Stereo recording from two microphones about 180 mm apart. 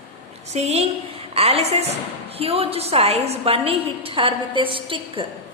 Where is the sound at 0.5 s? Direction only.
35° right (ahead or behind).